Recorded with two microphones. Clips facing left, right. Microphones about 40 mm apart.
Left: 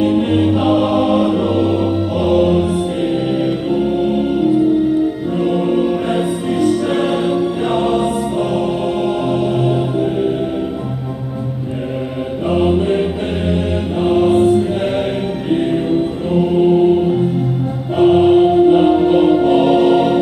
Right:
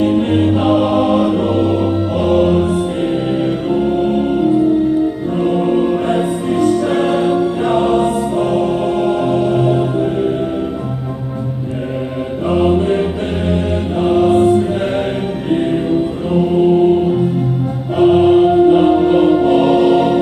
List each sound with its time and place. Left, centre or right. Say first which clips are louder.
0.0 s music: right 1 dB; centre
3.7 s music: right 2 dB; centre
5.6 s music: right 1 dB; centre
12.4 s music: right 1 dB; centre
14.1 s mantra: right 1 dB; centre
16.3 s chant: right 1 dB; centre
17.9 s music: even; centre